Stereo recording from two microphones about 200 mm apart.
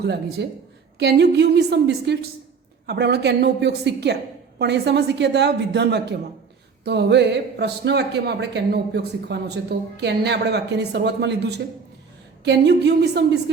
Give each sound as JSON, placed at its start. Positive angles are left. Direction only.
{"t": 0.0, "sound": "speech", "side_deg": -55}